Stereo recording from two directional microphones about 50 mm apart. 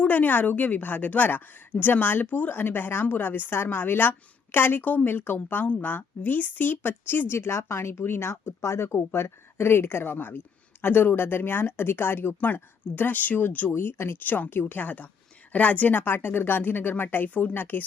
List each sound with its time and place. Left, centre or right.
0.0 s a woman's voice: left
7.3 s speech: left
13.7 s speech: left
14.3 s a woman's voice: left
17.5 s a woman's voice: left